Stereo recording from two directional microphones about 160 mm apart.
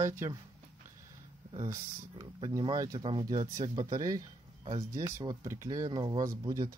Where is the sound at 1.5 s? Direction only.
20° right (ahead or behind).